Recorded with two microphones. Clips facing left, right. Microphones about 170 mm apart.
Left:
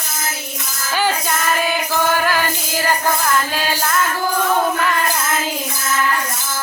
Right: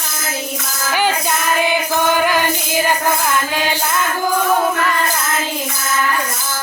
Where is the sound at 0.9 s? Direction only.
15° right (ahead or behind).